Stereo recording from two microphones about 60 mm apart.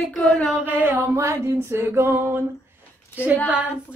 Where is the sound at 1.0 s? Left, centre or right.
Right.